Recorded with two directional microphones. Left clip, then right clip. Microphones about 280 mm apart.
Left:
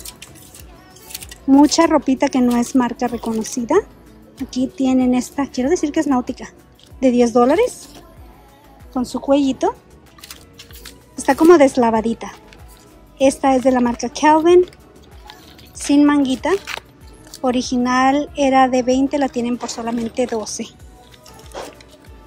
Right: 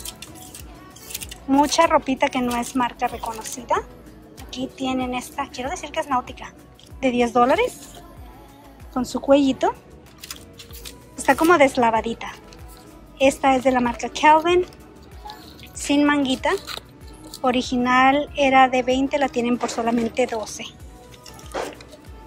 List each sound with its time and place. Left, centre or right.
1.5 s speech: left
8.9 s speech: centre
10.2 s music: centre
11.2 s speech: centre
15.9 s speech: centre